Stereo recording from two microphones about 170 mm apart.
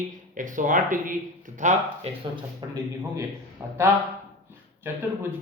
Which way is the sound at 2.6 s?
25° right (ahead or behind).